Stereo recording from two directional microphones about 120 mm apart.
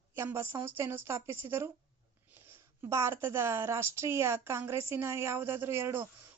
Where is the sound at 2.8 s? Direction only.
25° right (ahead or behind).